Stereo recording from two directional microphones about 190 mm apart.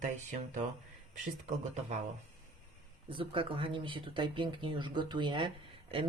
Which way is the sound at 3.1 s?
30° right (ahead or behind).